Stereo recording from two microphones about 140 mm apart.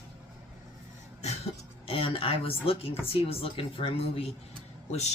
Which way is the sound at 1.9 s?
40° left (ahead or behind).